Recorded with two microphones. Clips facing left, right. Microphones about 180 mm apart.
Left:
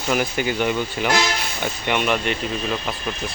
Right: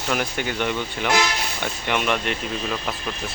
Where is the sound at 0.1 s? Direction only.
5° left (ahead or behind).